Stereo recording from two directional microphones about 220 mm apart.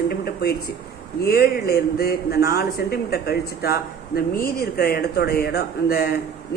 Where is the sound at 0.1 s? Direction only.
45° left (ahead or behind).